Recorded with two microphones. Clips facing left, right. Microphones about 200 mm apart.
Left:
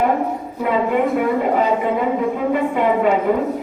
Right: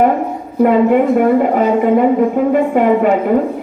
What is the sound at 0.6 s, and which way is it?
A woman's voice, 50° right (ahead or behind).